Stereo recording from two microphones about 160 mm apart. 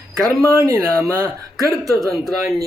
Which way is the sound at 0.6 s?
15° right (ahead or behind).